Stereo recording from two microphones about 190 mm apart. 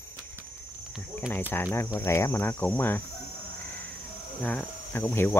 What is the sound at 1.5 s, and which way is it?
Speech, 10° left (ahead or behind).